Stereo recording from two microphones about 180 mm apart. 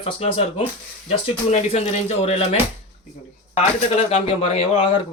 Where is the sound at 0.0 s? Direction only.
30° left (ahead or behind).